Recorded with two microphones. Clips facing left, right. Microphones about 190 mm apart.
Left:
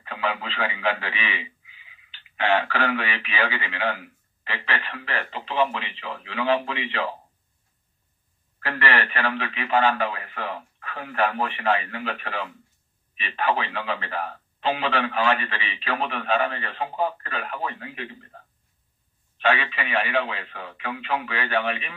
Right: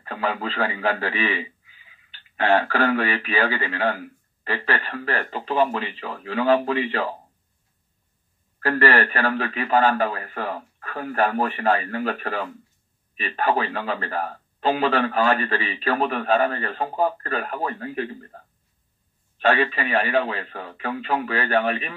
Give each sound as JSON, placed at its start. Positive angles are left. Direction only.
{"t": 0.0, "sound": "a man's voice", "side_deg": -45}
{"t": 8.5, "sound": "a man's voice", "side_deg": -45}
{"t": 19.3, "sound": "a man's voice", "side_deg": -40}